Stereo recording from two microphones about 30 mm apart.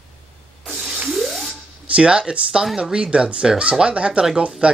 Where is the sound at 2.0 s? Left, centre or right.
Right.